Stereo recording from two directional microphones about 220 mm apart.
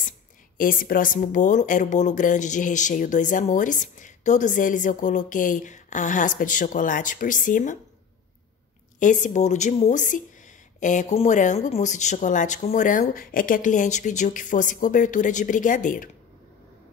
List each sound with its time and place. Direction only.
0.6 s speech: 40° left (ahead or behind)
9.0 s speech: 35° left (ahead or behind)